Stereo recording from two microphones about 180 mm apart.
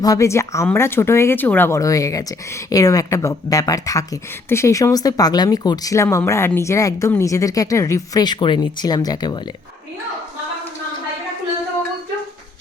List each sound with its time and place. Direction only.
0.0 s speech: 20° left (ahead or behind)